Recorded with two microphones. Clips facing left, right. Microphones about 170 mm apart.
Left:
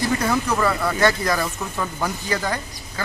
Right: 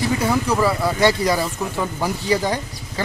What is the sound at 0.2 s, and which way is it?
Speech, 10° right (ahead or behind).